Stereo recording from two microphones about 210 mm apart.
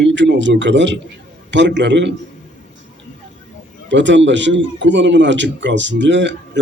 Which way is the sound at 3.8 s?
60° right (ahead or behind).